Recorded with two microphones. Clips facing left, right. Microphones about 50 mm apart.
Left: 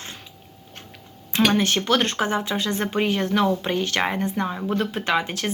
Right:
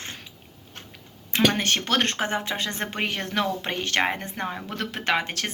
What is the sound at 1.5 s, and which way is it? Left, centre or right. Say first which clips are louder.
Speech: left 4 dB; right.